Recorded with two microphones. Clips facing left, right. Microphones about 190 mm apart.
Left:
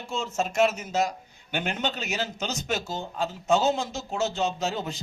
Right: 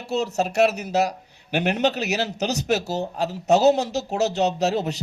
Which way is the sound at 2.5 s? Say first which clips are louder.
Right 8 dB; 40° right (ahead or behind).